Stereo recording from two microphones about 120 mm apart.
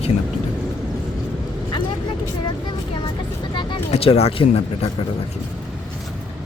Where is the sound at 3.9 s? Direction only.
55° left (ahead or behind).